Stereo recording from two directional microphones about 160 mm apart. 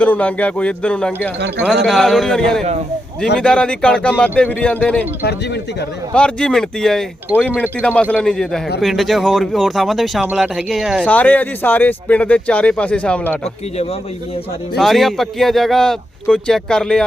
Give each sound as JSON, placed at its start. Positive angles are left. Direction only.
{"t": 0.0, "sound": "speech", "side_deg": 10}
{"t": 1.6, "sound": "speech", "side_deg": -5}
{"t": 6.1, "sound": "speech", "side_deg": 5}
{"t": 7.3, "sound": "speech", "side_deg": -10}
{"t": 7.8, "sound": "speech", "side_deg": 10}
{"t": 11.1, "sound": "speech", "side_deg": 10}
{"t": 14.8, "sound": "speech", "side_deg": 0}